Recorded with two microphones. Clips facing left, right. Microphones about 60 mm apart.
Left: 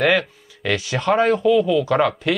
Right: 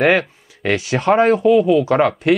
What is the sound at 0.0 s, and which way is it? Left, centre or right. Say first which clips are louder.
Speech: right 3 dB; right.